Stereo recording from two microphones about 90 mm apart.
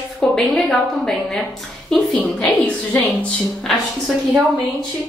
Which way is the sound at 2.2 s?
15° left (ahead or behind).